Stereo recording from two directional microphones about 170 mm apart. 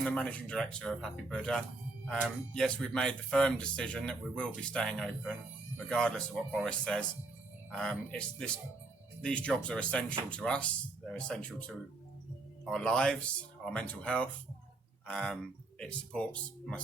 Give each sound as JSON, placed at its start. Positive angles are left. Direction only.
{"t": 0.0, "sound": "speech", "side_deg": 5}
{"t": 9.2, "sound": "speech", "side_deg": 5}